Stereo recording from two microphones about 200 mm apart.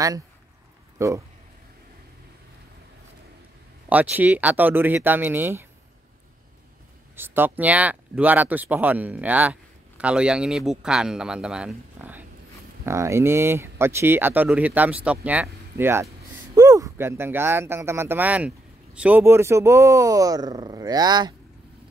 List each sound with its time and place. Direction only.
0.9 s speech: 15° right (ahead or behind)
3.9 s speech: 10° right (ahead or behind)
7.2 s speech: 10° right (ahead or behind)